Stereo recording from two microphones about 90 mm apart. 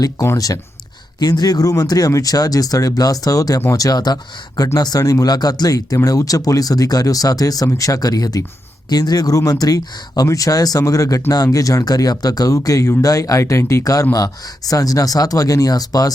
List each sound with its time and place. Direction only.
0.3 s speech: 40° left (ahead or behind)